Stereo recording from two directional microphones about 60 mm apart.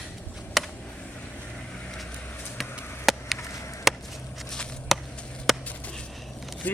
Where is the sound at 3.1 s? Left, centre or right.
Centre.